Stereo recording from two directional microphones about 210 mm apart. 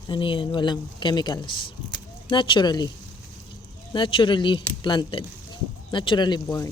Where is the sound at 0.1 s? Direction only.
25° left (ahead or behind).